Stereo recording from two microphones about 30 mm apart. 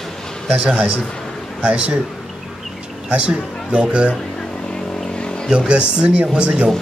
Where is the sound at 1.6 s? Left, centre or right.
Right.